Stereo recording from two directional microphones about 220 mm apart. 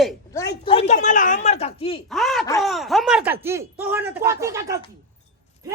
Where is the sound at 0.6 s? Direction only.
30° left (ahead or behind).